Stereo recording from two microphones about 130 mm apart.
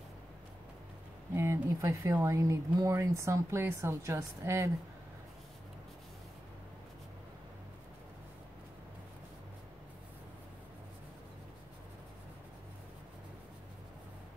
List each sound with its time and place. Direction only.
1.3 s speech: 20° right (ahead or behind)